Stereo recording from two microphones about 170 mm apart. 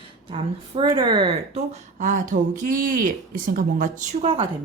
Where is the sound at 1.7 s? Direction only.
45° right (ahead or behind).